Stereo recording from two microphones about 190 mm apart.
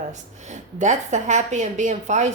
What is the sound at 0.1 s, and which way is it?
A woman's voice, 40° right (ahead or behind).